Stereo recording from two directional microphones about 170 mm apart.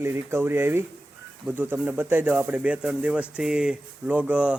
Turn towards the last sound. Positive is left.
turn(degrees=-5)  # may be behind; listen again after turning